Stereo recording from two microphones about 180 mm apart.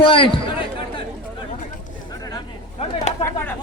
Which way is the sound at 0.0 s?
30° left (ahead or behind).